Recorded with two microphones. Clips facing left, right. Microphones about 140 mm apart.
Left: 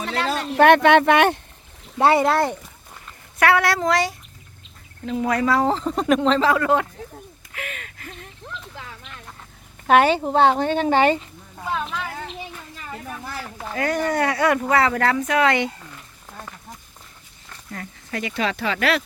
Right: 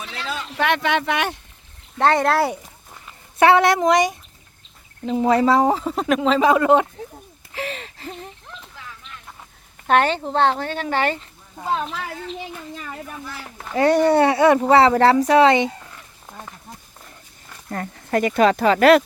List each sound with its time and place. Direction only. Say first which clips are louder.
0.0 s speech: left 6 dB; 55° left (ahead or behind)
2.0 s speech: even; 5° left (ahead or behind)
3.3 s speech: right 4 dB; 25° right (ahead or behind)
5.6 s speech: even; 10° right (ahead or behind)
6.4 s speech: right 4 dB; 20° right (ahead or behind)
7.5 s a sound: right 6 dB; 30° right (ahead or behind)
9.8 s speech: left 2 dB; 5° left (ahead or behind)
11.6 s a sound: right 3 dB; 30° right (ahead or behind)
13.7 s speech: right 7 dB; 35° right (ahead or behind)
17.7 s speech: right 9 dB; 50° right (ahead or behind)